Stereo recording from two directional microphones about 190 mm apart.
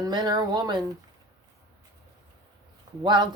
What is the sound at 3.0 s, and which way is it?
Speech, 25° right (ahead or behind).